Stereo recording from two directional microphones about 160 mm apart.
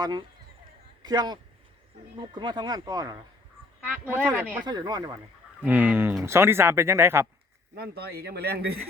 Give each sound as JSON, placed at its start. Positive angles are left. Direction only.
{"t": 0.0, "sound": "speech", "side_deg": -25}
{"t": 4.4, "sound": "speech", "side_deg": -10}
{"t": 4.6, "sound": "speech", "side_deg": -25}
{"t": 5.6, "sound": "speech", "side_deg": -10}
{"t": 7.8, "sound": "speech", "side_deg": -80}